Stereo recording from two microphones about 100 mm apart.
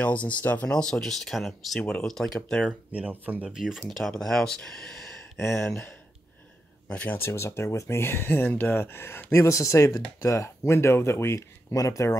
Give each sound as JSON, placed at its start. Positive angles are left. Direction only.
{"t": 0.0, "sound": "speech", "side_deg": 15}
{"t": 2.9, "sound": "speech", "side_deg": -15}
{"t": 3.4, "sound": "speech", "side_deg": -5}
{"t": 6.9, "sound": "speech", "side_deg": 15}
{"t": 7.2, "sound": "speech", "side_deg": 25}